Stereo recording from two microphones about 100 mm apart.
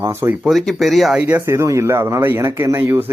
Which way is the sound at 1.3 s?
25° right (ahead or behind).